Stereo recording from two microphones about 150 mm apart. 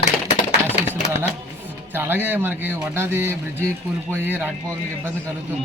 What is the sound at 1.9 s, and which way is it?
A man's voice, 15° right (ahead or behind).